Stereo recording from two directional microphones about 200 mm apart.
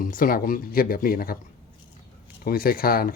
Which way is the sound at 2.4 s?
50° left (ahead or behind).